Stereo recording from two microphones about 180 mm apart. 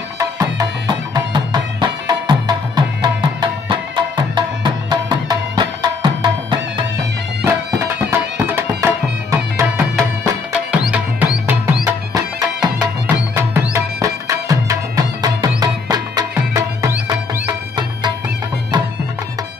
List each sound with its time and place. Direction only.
0.2 s music: 20° right (ahead or behind)
7.8 s music: 15° right (ahead or behind)
10.7 s music: 5° right (ahead or behind)
12.1 s music: 20° right (ahead or behind)